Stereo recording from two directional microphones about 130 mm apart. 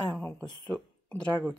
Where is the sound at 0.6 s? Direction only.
5° left (ahead or behind).